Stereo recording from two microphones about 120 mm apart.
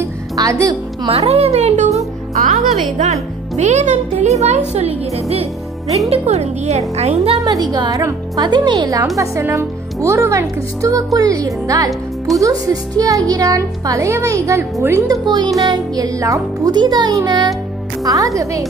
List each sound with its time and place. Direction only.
0.0 s music: 25° right (ahead or behind)
1.1 s speech: 60° right (ahead or behind)
7.4 s speech: 35° right (ahead or behind)
15.2 s speech: 40° right (ahead or behind)